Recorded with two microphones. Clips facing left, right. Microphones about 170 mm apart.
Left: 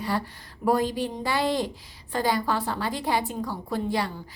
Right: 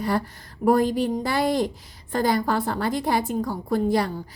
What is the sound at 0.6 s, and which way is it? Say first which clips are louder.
A woman's voice: right 4 dB; 50° right (ahead or behind).